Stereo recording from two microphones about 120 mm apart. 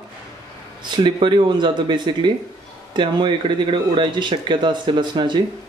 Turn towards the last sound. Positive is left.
turn(degrees=-40)  # may be behind; listen again after turning